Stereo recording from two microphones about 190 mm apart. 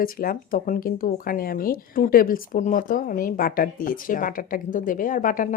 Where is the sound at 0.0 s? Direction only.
50° left (ahead or behind).